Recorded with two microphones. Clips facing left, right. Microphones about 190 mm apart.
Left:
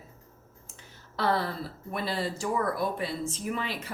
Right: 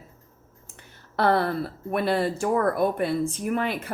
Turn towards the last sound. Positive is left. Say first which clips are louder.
# right 7 dB
turn(degrees=-55)  # may be behind; listen again after turning